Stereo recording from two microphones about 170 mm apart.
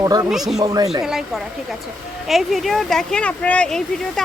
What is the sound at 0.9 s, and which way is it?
Speech, centre (ahead or behind).